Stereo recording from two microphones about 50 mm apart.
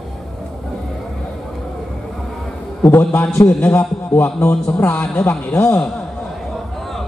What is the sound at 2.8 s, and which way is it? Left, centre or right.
Speech, left.